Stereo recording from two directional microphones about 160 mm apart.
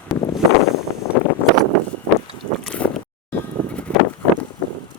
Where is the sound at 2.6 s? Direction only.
5° left (ahead or behind).